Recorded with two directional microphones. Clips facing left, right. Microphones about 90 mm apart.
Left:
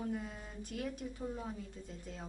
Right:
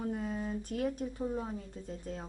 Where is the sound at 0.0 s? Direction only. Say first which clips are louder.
Right 5 dB; 40° right (ahead or behind).